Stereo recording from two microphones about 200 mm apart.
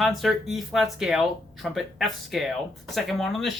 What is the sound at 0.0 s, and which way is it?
Speech, centre (ahead or behind).